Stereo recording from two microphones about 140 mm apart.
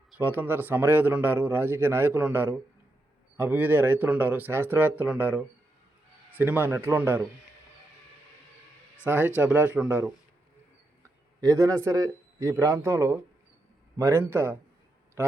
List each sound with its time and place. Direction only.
0.2 s a man's voice: 15° right (ahead or behind)
9.0 s a man's voice: 15° right (ahead or behind)
11.3 s a man's voice: 25° right (ahead or behind)